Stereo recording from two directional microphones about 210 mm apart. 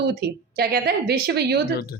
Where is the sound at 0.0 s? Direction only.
45° right (ahead or behind).